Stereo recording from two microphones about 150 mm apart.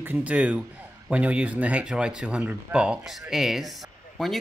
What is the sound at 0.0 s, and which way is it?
Speech, 10° right (ahead or behind).